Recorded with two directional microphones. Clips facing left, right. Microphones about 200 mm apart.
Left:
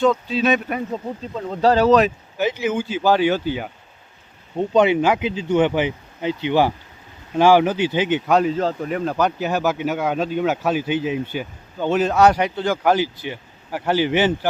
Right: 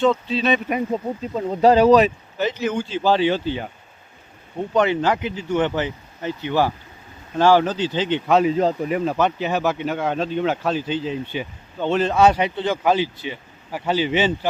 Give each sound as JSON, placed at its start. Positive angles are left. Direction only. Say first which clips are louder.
{"t": 0.0, "sound": "speech", "louder": "left 1 dB", "side_deg": 0}
{"t": 0.7, "sound": "speech", "louder": "right 3 dB", "side_deg": -15}
{"t": 2.4, "sound": "speech", "louder": "left 1 dB", "side_deg": 10}
{"t": 4.7, "sound": "speech", "louder": "left 3 dB", "side_deg": 15}
{"t": 8.3, "sound": "speech", "louder": "right 4 dB", "side_deg": 0}